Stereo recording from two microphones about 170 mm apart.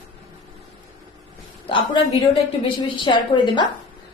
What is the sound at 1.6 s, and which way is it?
A woman's voice, 30° left (ahead or behind).